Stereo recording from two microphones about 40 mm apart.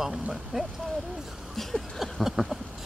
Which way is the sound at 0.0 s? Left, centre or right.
Centre.